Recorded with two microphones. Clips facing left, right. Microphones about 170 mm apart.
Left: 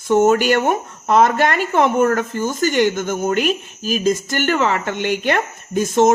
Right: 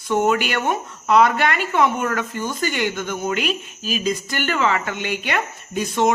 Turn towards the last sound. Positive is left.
turn(degrees=45)  # may be behind; listen again after turning